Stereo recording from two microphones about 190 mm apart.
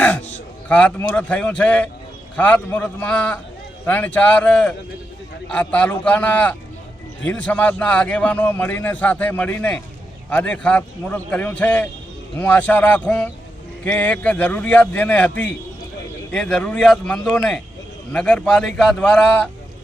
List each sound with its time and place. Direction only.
0.7 s a man's voice: 5° left (ahead or behind)